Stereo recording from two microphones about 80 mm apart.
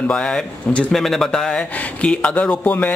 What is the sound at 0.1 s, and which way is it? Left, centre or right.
Speech, centre.